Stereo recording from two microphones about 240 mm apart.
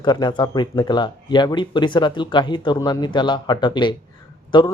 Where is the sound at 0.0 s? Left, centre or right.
Centre.